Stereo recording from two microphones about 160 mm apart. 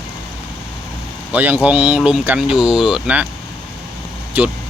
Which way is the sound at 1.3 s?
10° right (ahead or behind).